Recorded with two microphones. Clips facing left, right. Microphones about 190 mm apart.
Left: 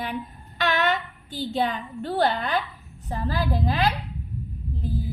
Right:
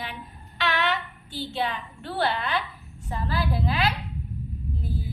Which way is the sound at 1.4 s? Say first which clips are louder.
Left 4 dB; 40° left (ahead or behind).